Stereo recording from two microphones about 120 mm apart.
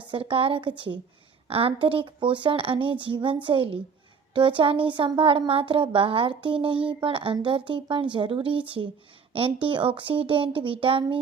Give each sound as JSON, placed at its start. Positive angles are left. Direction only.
{"t": 0.1, "sound": "a woman's voice", "side_deg": -50}